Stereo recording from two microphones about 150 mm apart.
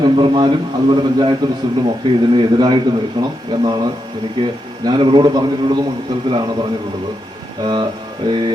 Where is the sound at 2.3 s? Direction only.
30° right (ahead or behind).